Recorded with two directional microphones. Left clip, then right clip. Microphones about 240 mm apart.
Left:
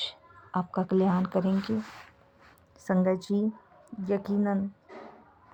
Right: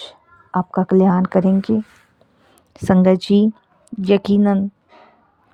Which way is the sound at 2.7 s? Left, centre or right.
Right.